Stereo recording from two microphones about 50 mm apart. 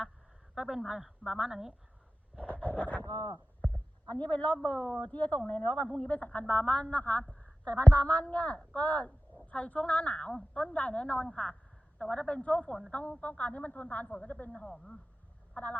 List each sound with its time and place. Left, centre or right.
0.5 s speech: centre
2.4 s a sound: left
4.4 s a woman's voice: left
5.1 s a woman's voice: left
14.6 s speech: centre
15.5 s a woman's voice: left